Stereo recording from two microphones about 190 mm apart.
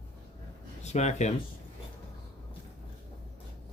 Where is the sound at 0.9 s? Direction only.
35° left (ahead or behind).